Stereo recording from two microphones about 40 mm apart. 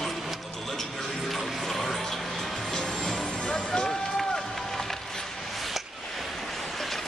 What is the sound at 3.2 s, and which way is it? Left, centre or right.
Run, centre.